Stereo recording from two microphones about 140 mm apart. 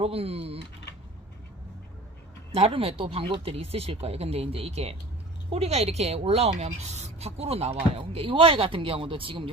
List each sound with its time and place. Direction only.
0.0 s a woman's voice: 45° right (ahead or behind)
2.5 s a woman's voice: 45° right (ahead or behind)